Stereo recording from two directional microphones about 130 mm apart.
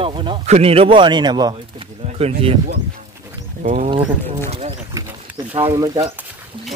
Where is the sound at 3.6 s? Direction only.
75° right (ahead or behind).